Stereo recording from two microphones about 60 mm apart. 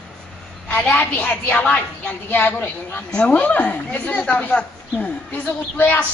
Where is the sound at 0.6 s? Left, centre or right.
Left.